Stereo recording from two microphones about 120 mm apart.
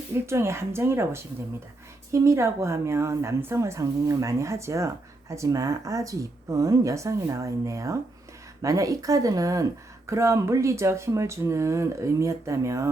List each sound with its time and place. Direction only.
0.3 s speech: 25° right (ahead or behind)